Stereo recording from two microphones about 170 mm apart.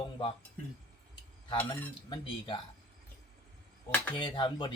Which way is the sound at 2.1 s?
25° left (ahead or behind).